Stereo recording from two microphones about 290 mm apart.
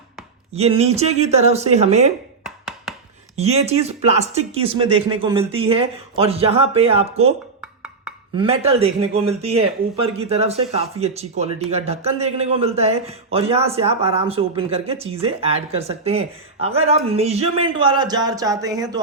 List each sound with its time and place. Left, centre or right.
0.5 s speech: right
2.4 s a sound: centre
3.3 s speech: right
7.6 s wood block: centre
8.4 s speech: centre